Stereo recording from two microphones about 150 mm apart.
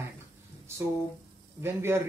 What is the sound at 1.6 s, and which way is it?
Speech, 15° right (ahead or behind).